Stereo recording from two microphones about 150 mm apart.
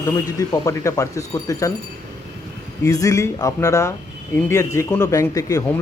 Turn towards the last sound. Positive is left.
turn(degrees=20)  # may be behind; listen again after turning